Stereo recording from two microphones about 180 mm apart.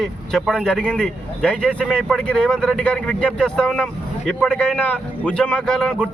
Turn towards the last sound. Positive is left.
turn(degrees=5)  # may be behind; listen again after turning